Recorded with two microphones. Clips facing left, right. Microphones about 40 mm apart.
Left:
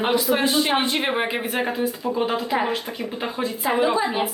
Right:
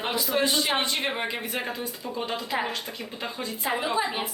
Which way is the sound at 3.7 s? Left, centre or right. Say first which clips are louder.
Left 8 dB; centre.